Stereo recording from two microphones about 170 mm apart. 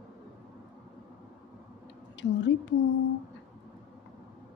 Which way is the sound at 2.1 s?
90° left.